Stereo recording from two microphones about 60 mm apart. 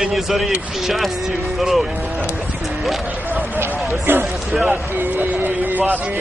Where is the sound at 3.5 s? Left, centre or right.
Right.